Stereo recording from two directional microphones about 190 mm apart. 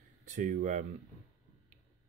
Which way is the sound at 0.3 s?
40° right (ahead or behind).